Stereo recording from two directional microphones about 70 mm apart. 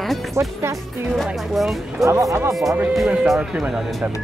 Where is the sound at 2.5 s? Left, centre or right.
Centre.